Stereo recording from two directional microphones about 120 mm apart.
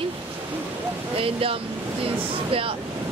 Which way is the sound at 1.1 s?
50° right (ahead or behind).